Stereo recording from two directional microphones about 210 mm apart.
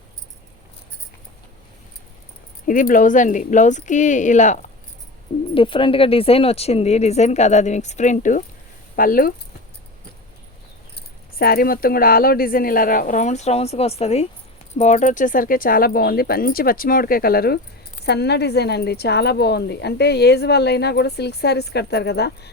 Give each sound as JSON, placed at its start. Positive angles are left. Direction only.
{"t": 2.6, "sound": "speech", "side_deg": 40}
{"t": 5.5, "sound": "a woman's voice", "side_deg": 25}
{"t": 10.9, "sound": "a woman's voice", "side_deg": 45}